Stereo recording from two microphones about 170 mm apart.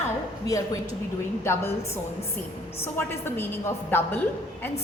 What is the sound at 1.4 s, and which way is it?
A woman's voice, 15° left (ahead or behind).